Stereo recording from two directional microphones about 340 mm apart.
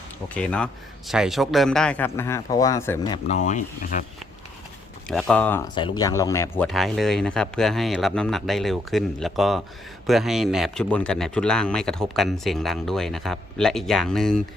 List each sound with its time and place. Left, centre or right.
0.3 s a man's voice: centre; by 4.0 s left
5.0 s speech: centre